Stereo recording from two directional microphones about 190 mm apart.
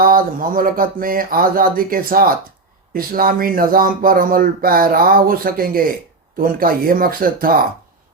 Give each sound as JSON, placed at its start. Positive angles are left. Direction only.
{"t": 0.0, "sound": "speech", "side_deg": -50}